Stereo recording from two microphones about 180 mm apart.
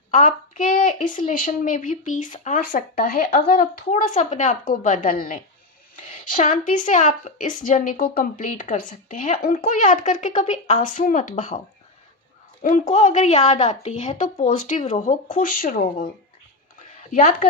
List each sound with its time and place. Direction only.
0.1 s a woman's voice: 45° left (ahead or behind)
12.6 s a woman's voice: 45° left (ahead or behind)
17.1 s a woman's voice: 45° left (ahead or behind)